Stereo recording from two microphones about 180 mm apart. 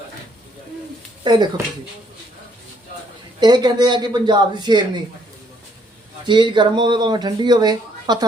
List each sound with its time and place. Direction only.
1.2 s speech: 25° right (ahead or behind)
3.4 s speech: 25° right (ahead or behind)
6.2 s speech: 25° right (ahead or behind)